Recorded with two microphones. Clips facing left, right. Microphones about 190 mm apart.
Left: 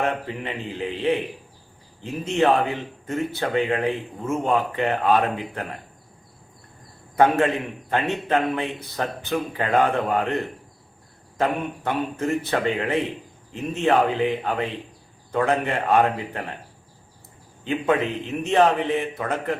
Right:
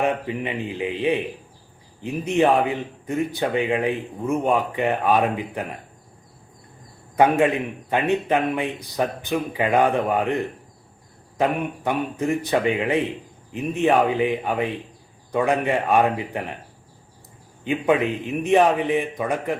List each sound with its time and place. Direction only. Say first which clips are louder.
0.0 s speech: right 3 dB; 15° right (ahead or behind)
7.2 s speech: right 1 dB; 15° right (ahead or behind)
17.6 s speech: right 2 dB; 15° right (ahead or behind)